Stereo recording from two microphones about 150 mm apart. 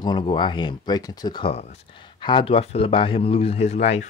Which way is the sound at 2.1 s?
30° left (ahead or behind).